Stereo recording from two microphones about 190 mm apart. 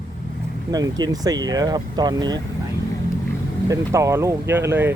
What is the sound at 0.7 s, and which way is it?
Speech, 20° right (ahead or behind).